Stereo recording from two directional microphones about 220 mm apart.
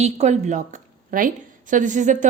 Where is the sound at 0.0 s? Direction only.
30° right (ahead or behind).